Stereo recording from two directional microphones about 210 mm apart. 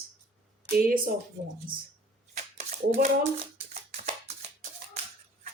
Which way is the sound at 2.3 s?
35° right (ahead or behind).